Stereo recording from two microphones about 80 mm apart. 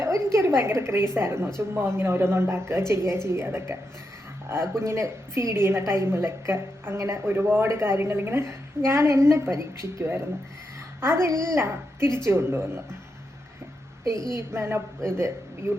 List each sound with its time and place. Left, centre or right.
0.0 s a woman's voice: right
14.2 s a woman's voice: left
14.5 s speech: right